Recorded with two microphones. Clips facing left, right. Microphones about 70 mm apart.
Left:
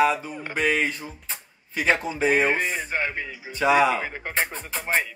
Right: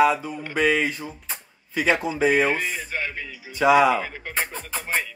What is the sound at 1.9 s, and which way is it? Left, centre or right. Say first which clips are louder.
Speech: right 1 dB; centre.